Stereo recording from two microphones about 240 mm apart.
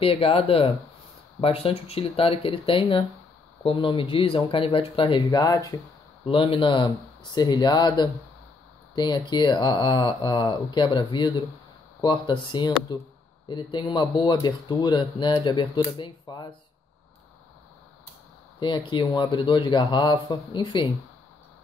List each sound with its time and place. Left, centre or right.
0.0 s speech: left
18.6 s speech: centre